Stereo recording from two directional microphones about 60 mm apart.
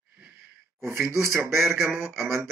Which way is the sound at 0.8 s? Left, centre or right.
Right.